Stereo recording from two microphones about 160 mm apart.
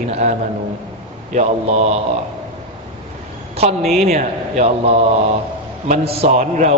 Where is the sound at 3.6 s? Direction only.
40° right (ahead or behind).